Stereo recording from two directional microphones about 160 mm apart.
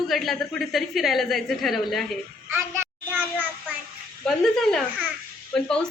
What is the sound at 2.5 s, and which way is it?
Speech, 15° right (ahead or behind).